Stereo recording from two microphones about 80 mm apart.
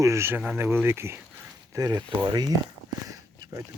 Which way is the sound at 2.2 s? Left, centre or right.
Right.